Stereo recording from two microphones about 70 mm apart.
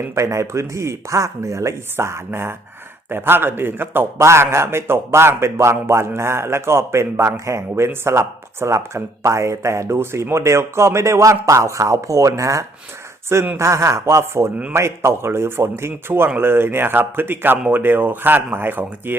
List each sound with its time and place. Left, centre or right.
0.1 s a man's voice: right